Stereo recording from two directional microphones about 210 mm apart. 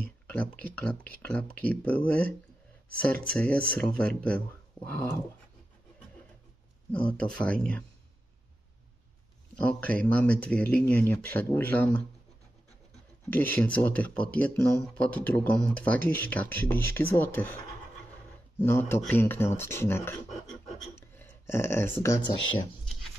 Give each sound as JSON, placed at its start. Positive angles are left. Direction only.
{"t": 0.7, "sound": "speech", "side_deg": 5}
{"t": 6.9, "sound": "speech", "side_deg": 5}
{"t": 9.6, "sound": "speech", "side_deg": 5}
{"t": 13.3, "sound": "speech", "side_deg": 10}